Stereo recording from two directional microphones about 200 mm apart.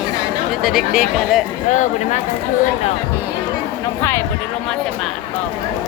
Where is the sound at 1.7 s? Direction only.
35° left (ahead or behind).